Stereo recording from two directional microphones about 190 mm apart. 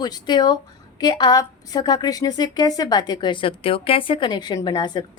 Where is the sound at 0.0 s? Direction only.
20° left (ahead or behind).